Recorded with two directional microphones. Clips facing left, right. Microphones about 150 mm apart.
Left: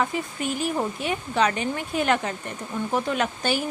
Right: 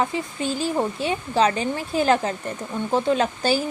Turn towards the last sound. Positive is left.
turn(degrees=-35)  # may be behind; listen again after turning